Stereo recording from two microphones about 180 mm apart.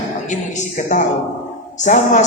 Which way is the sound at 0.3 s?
45° left (ahead or behind).